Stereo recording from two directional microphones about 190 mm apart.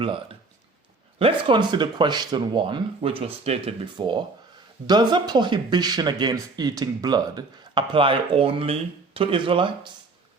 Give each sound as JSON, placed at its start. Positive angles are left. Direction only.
{"t": 0.0, "sound": "speech", "side_deg": -30}